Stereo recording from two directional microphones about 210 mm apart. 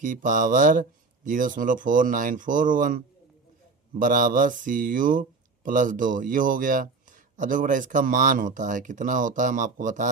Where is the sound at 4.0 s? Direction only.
40° right (ahead or behind).